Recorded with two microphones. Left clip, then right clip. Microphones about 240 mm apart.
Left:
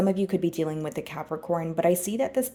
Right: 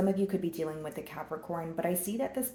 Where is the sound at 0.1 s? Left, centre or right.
Left.